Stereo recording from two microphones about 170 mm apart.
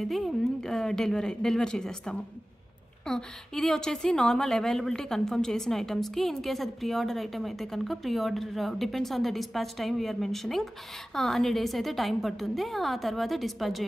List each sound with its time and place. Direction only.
0.0 s a woman's voice: centre (ahead or behind)